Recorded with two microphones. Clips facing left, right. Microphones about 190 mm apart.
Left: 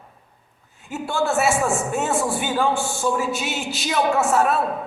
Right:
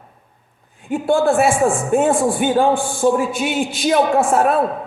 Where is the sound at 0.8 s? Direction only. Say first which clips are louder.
Right 8 dB; 55° right (ahead or behind).